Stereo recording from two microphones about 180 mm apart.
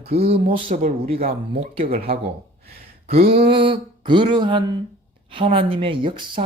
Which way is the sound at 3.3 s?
30° right (ahead or behind).